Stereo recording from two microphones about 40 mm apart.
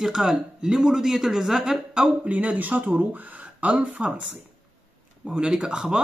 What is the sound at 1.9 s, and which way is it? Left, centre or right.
Speech, right.